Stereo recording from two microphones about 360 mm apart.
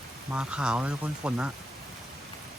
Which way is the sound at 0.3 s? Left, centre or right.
Centre.